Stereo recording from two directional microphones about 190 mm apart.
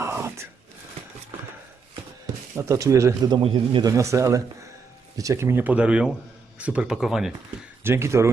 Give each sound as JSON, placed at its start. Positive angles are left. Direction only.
{"t": 0.0, "sound": "a sound", "side_deg": -15}
{"t": 2.6, "sound": "speech", "side_deg": -15}
{"t": 7.9, "sound": "speech", "side_deg": -15}